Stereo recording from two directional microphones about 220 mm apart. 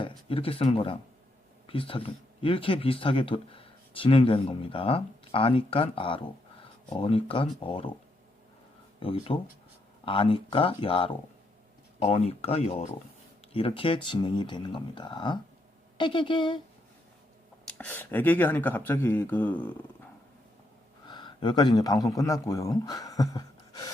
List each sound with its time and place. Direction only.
0.0 s speech: 25° left (ahead or behind)
9.0 s speech: 25° left (ahead or behind)
17.7 s speech: 5° left (ahead or behind)
21.1 s a man's voice: 20° left (ahead or behind)